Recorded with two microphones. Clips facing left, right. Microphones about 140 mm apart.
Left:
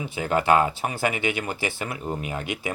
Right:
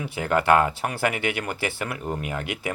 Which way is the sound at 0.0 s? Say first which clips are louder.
Right 1 dB; 60° right (ahead or behind).